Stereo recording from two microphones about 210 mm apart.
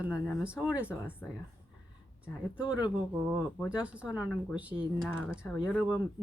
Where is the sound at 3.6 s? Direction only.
5° right (ahead or behind).